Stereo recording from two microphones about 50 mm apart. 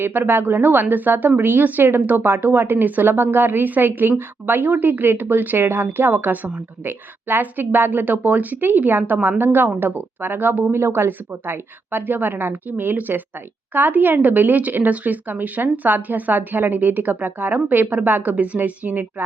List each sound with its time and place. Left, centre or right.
0.0 s a woman's voice: right
10.8 s a woman's voice: right